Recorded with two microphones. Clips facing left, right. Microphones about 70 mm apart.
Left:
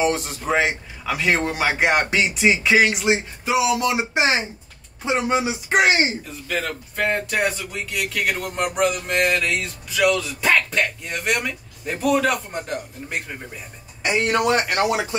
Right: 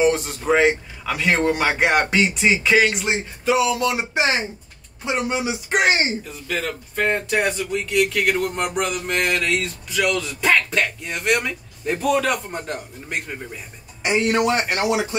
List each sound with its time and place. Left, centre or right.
0.0 s speech: centre
5.4 s speech: left
6.4 s speech: centre
14.1 s a man's voice: left